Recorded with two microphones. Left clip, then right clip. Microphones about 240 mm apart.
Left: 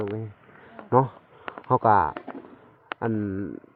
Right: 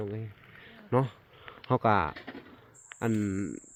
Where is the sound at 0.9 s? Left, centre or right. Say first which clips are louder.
Left 8 dB; centre.